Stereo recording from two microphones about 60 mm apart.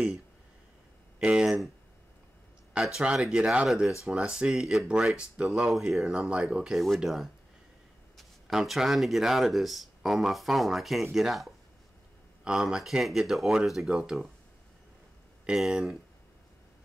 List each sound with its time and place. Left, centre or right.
1.2 s speech: centre
2.7 s speech: centre
5.7 s speech: centre
15.4 s speech: centre